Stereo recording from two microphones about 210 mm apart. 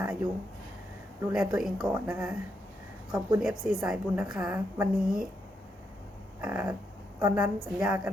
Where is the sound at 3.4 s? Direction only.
Centre (ahead or behind).